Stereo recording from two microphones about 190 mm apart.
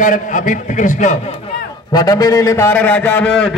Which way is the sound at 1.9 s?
20° left (ahead or behind).